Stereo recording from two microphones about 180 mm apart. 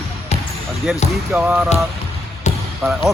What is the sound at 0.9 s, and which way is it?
Speech, 5° right (ahead or behind).